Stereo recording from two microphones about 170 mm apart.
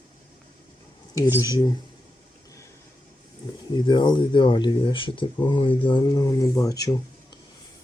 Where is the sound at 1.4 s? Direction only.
20° left (ahead or behind).